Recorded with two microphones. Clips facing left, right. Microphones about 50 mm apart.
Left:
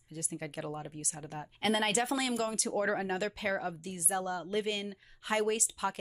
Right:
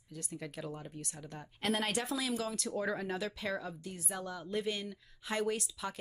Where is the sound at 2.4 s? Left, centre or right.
Left.